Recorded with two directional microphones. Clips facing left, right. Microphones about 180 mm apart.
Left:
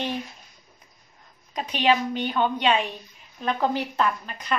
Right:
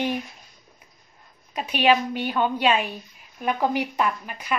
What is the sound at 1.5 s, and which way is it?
Speech, 10° right (ahead or behind).